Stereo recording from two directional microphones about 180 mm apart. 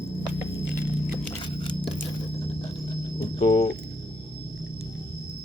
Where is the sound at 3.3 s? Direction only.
40° left (ahead or behind).